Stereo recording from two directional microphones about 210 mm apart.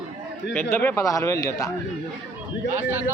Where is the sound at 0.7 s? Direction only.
15° left (ahead or behind).